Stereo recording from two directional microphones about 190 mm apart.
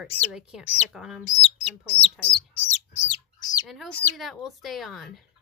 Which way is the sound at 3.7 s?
5° left (ahead or behind).